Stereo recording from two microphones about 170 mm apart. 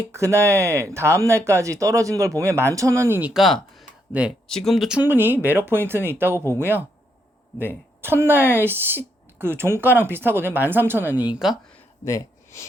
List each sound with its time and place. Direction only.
0.1 s speech: 15° right (ahead or behind)
8.0 s speech: 15° right (ahead or behind)
12.0 s speech: 15° left (ahead or behind)